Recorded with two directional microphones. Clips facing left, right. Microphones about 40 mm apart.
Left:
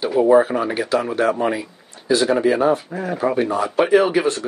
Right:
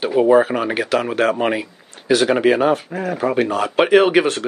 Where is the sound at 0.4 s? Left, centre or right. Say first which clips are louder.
Right 1 dB; right.